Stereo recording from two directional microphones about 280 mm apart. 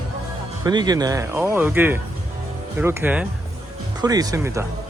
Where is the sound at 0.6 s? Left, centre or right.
Centre.